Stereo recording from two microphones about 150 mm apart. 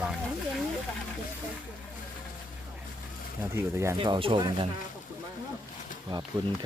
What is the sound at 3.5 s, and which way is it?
Speech, 20° right (ahead or behind).